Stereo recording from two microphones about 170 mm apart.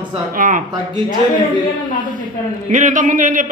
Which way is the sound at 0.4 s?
50° right (ahead or behind).